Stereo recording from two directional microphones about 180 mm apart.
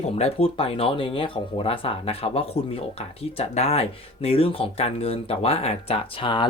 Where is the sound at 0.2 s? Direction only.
35° left (ahead or behind).